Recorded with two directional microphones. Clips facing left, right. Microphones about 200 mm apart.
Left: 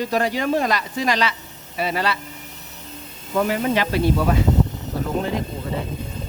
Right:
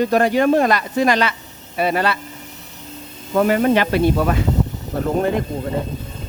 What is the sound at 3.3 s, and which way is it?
A man's voice, 55° right (ahead or behind).